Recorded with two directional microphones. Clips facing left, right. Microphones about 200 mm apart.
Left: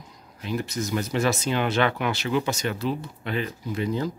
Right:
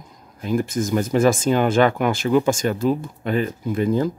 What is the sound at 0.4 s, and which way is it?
Speech, 50° right (ahead or behind).